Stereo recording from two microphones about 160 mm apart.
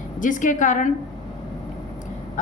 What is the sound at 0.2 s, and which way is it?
Speech, 55° left (ahead or behind).